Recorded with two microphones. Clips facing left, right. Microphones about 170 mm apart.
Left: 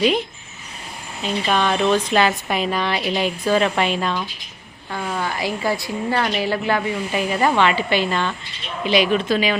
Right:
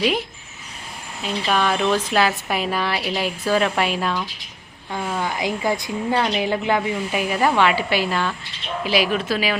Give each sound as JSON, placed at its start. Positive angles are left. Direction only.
{"t": 0.0, "sound": "a woman's voice", "side_deg": -5}
{"t": 7.1, "sound": "a woman's voice", "side_deg": -5}